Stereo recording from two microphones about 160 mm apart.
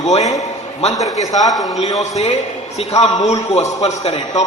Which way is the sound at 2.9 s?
40° left (ahead or behind).